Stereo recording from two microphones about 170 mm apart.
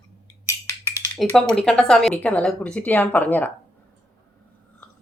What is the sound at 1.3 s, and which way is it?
Speech, 5° left (ahead or behind).